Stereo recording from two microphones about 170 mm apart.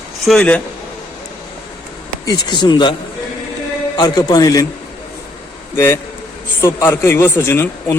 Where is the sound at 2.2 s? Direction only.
25° left (ahead or behind).